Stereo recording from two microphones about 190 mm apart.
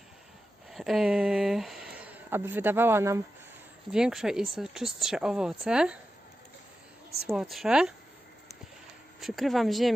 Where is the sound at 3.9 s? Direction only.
5° right (ahead or behind).